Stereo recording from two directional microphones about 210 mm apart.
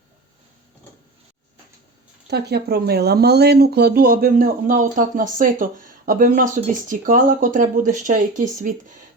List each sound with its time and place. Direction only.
2.2 s speech: 50° right (ahead or behind)